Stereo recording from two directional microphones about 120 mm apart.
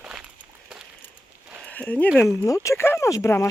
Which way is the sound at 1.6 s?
10° left (ahead or behind).